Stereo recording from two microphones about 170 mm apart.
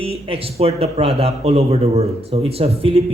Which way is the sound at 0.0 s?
35° right (ahead or behind).